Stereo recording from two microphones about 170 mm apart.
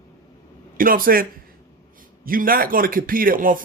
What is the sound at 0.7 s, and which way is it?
Speech, 55° right (ahead or behind).